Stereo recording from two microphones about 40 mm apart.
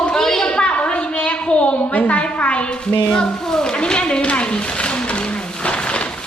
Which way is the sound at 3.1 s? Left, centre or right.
Centre.